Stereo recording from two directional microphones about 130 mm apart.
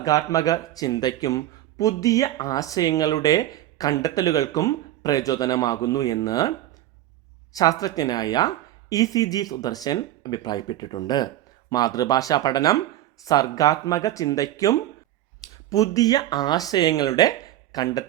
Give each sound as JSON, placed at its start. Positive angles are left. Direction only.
{"t": 0.0, "sound": "speech", "side_deg": 25}
{"t": 7.5, "sound": "speech", "side_deg": 30}